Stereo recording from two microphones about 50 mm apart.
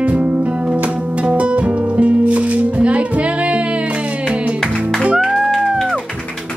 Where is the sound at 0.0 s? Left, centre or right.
Right.